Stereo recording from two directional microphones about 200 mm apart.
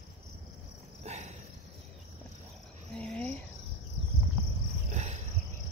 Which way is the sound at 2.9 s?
5° left (ahead or behind).